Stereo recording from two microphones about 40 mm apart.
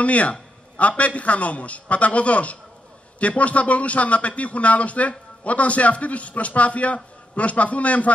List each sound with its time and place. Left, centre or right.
0.0 s a man's voice: left